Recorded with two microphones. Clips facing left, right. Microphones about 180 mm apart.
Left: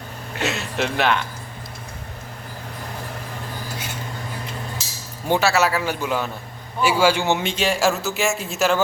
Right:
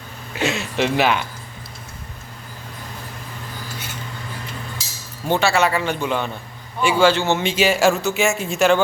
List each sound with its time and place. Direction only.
0.3 s speech: centre (ahead or behind)
5.3 s a man's voice: 5° left (ahead or behind)
7.4 s speech: 5° right (ahead or behind)